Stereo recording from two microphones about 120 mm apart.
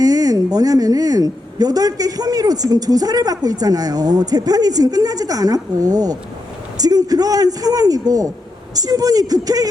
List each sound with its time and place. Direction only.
0.0 s a woman's voice: 30° right (ahead or behind)